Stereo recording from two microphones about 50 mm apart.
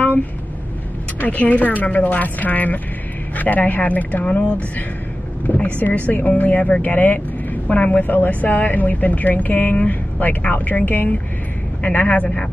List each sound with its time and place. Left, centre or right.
1.2 s a man's voice: left